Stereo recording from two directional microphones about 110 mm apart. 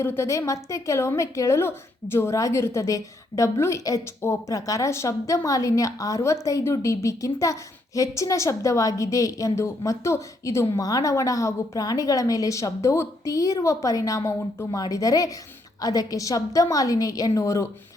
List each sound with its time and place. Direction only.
0.0 s a woman's voice: 25° left (ahead or behind)